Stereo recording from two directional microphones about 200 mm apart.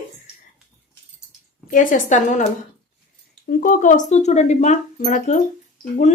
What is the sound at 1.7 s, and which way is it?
Speech, 40° left (ahead or behind).